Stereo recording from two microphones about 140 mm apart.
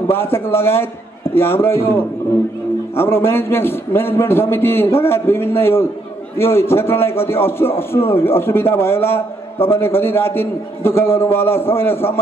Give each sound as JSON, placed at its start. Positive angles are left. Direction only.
{"t": 0.1, "sound": "a man's voice", "side_deg": 15}